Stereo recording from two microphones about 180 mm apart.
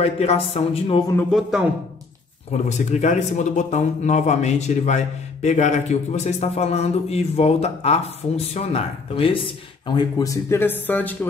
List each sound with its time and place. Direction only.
0.0 s speech: 35° left (ahead or behind)
1.3 s speech: centre (ahead or behind)
2.5 s speech: 40° left (ahead or behind); by 11.1 s 10° left (ahead or behind)